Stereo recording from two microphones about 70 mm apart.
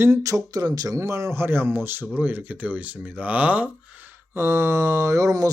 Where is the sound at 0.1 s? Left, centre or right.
Right.